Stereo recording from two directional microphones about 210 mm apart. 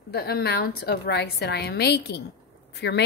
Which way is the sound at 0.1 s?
50° left (ahead or behind).